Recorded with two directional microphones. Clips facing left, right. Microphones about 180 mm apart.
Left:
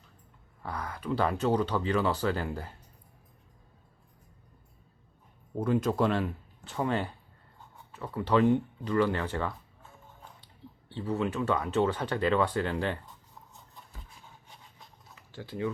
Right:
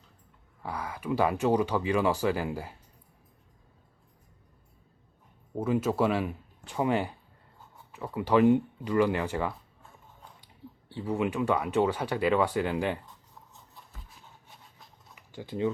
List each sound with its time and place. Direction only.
0.6 s speech: 10° right (ahead or behind)
5.5 s speech: 5° right (ahead or behind)
15.1 s a sound: 15° right (ahead or behind)